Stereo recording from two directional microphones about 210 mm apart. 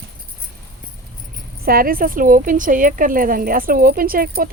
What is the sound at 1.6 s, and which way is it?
Speech, 45° right (ahead or behind).